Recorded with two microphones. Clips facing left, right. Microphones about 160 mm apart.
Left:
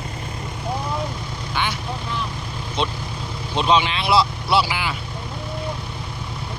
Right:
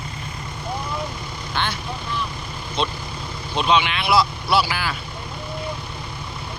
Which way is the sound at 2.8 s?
20° left (ahead or behind).